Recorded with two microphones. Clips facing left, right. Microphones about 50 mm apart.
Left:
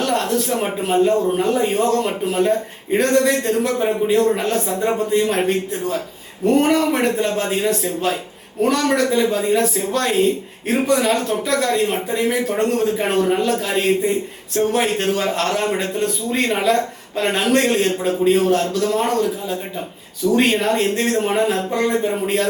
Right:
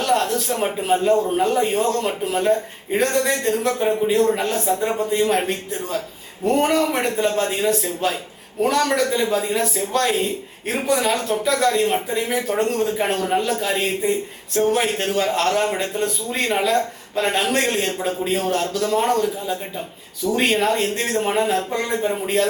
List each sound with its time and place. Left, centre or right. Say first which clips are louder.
0.0 s speech: left 1 dB; centre
2.9 s speech: left 4 dB; centre